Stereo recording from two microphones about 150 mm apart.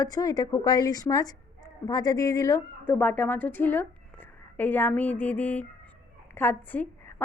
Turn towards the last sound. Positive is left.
turn(degrees=15)  # may be behind; listen again after turning